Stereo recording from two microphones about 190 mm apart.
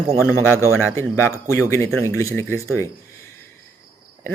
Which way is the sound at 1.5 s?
15° left (ahead or behind).